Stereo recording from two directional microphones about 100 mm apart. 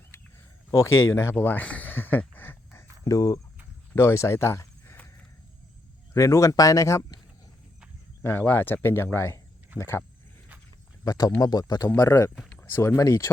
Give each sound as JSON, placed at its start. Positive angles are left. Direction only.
{"t": 0.7, "sound": "speech", "side_deg": 30}
{"t": 6.1, "sound": "speech", "side_deg": 30}
{"t": 8.2, "sound": "speech", "side_deg": 20}
{"t": 9.7, "sound": "speech", "side_deg": -20}
{"t": 11.0, "sound": "speech", "side_deg": 40}
{"t": 11.9, "sound": "speech", "side_deg": 30}